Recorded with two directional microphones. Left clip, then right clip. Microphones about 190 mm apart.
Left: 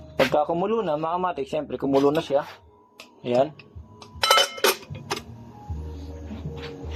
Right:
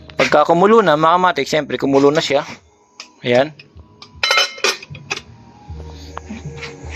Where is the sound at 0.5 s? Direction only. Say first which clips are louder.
Right 13 dB; 35° right (ahead or behind).